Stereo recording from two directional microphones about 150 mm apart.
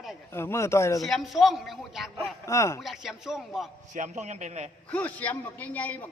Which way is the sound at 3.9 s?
55° right (ahead or behind).